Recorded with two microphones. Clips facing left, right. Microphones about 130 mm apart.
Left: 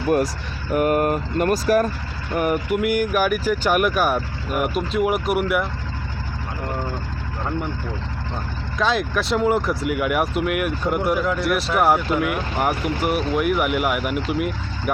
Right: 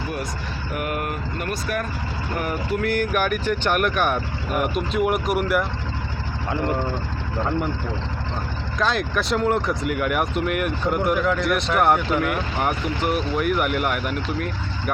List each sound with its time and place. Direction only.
0.7 s speech: 40° left (ahead or behind)
2.4 s speech: 15° left (ahead or behind)
8.8 s speech: centre (ahead or behind)